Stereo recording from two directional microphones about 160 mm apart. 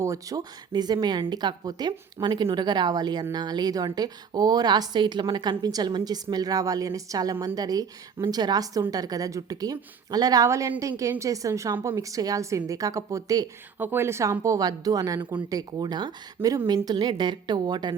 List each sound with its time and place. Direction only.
0.0 s a woman's voice: 20° right (ahead or behind)